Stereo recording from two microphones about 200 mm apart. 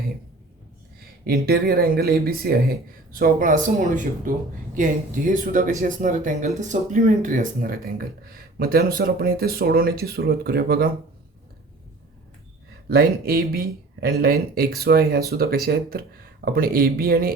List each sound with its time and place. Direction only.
1.2 s speech: 50° right (ahead or behind)
12.9 s speech: 50° right (ahead or behind)